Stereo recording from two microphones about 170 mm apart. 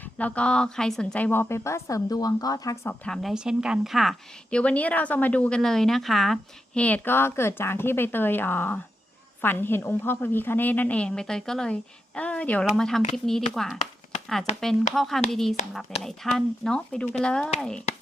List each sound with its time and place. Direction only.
0.0 s a woman's voice: 10° left (ahead or behind)
3.0 s a woman's voice: centre (ahead or behind)